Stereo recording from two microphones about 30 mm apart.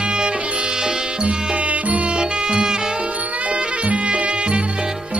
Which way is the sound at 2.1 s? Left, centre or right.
Right.